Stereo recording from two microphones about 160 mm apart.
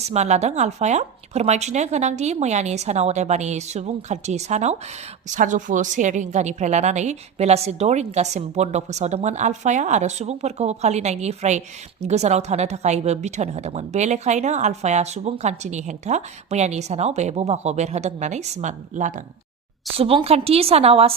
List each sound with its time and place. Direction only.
0.0 s a woman's voice: 45° right (ahead or behind)
20.0 s a woman's voice: 35° right (ahead or behind)